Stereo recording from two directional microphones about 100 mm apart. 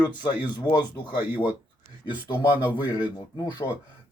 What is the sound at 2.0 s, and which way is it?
Speech, 50° left (ahead or behind).